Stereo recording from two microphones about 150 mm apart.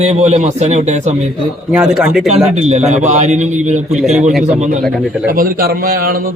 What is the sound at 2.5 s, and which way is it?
A man's voice, 50° right (ahead or behind).